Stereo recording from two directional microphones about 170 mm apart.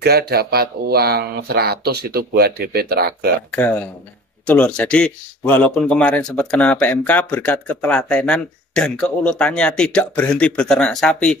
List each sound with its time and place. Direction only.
0.0 s speech: 70° right (ahead or behind)
3.5 s speech: 10° left (ahead or behind)